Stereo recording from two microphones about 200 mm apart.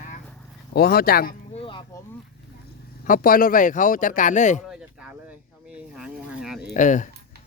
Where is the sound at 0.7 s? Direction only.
50° left (ahead or behind).